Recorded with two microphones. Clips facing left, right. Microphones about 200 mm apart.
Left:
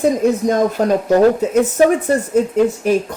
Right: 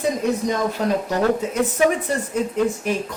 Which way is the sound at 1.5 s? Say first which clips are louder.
Left 6 dB; 40° left (ahead or behind).